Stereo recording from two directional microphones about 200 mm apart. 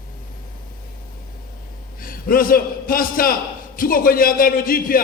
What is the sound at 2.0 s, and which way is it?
A man's voice, 45° left (ahead or behind).